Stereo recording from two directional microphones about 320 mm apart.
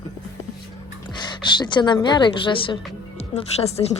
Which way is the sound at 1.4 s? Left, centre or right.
Centre.